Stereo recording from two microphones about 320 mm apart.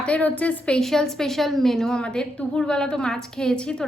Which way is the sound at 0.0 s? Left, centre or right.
Centre.